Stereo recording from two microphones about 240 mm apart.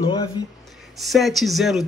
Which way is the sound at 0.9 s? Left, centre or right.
Centre.